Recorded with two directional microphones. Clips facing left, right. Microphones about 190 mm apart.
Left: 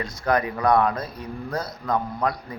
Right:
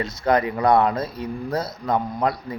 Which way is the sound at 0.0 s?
25° right (ahead or behind).